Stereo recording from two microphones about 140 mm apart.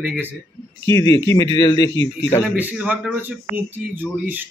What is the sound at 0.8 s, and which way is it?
A man's voice, 20° left (ahead or behind).